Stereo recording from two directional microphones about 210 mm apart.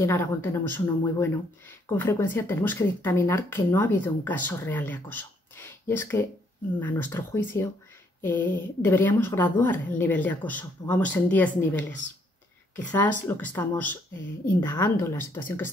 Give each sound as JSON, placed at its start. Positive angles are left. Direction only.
{"t": 0.0, "sound": "speech", "side_deg": 10}